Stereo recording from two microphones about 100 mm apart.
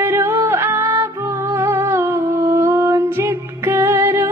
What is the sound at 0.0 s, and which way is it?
Music, 20° right (ahead or behind).